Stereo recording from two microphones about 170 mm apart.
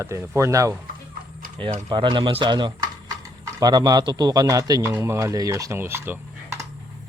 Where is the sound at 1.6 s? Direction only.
30° right (ahead or behind); by 6.6 s 10° right (ahead or behind).